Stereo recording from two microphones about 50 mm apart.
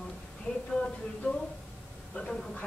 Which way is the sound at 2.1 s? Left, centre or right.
Centre.